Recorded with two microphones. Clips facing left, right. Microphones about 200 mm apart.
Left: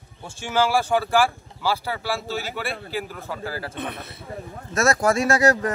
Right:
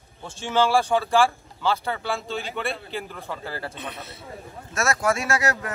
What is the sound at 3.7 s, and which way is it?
Speech, 55° left (ahead or behind).